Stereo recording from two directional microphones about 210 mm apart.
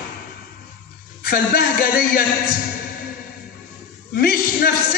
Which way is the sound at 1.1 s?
45° left (ahead or behind).